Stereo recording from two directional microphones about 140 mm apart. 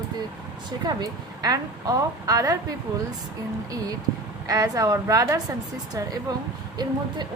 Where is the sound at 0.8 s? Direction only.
30° right (ahead or behind).